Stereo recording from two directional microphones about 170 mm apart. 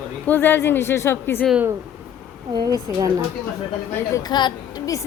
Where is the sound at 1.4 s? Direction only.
5° right (ahead or behind).